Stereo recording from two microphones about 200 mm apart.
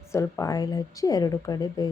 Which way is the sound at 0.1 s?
15° left (ahead or behind).